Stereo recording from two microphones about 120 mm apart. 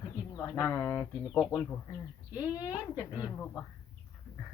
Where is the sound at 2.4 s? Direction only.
30° left (ahead or behind).